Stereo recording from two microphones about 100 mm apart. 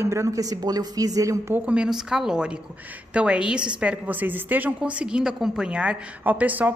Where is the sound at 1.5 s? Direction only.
10° right (ahead or behind).